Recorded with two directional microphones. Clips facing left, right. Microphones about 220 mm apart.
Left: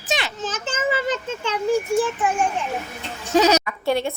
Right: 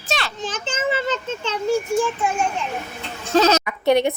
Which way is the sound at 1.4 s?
15° left (ahead or behind).